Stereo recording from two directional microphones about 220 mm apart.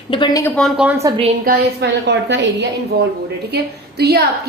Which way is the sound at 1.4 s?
50° right (ahead or behind).